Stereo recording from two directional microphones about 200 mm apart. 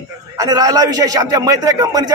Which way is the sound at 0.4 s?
15° right (ahead or behind).